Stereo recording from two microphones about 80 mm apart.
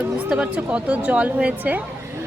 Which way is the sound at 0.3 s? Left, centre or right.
Centre.